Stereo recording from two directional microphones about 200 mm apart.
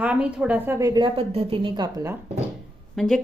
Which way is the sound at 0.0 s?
5° right (ahead or behind).